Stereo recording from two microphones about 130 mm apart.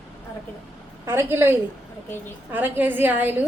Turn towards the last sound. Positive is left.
turn(degrees=-15)  # may be behind; listen again after turning